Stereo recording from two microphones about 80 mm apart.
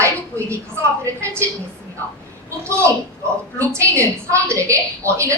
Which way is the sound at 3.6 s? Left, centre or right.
Right.